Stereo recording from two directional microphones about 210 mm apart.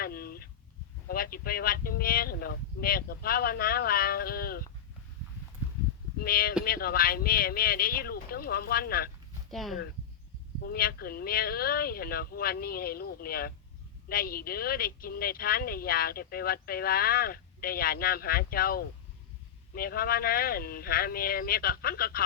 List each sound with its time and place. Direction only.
0.0 s a sound: 45° left (ahead or behind)
1.0 s speech: 45° left (ahead or behind)
6.2 s speech: 45° left (ahead or behind)
9.5 s speech: centre (ahead or behind)
10.6 s speech: 45° left (ahead or behind)